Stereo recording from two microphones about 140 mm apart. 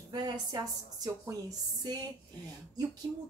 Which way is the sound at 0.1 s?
30° right (ahead or behind).